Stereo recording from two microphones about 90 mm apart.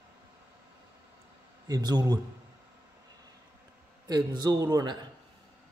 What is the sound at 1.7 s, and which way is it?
Speech, 50° right (ahead or behind).